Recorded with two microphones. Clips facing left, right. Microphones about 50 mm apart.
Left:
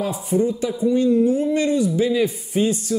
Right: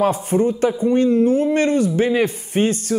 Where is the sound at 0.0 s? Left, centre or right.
Right.